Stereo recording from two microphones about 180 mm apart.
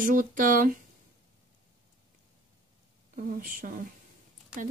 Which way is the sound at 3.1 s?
50° right (ahead or behind).